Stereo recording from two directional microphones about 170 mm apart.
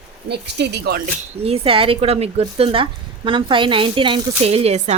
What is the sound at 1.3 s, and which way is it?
Speech, 35° right (ahead or behind).